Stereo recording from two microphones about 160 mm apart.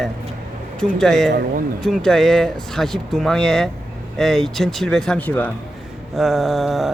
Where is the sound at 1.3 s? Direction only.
75° right (ahead or behind).